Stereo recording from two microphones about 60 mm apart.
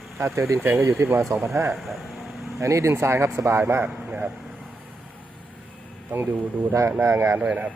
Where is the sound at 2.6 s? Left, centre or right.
Right.